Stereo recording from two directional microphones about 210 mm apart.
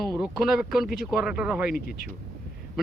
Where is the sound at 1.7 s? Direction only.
45° left (ahead or behind).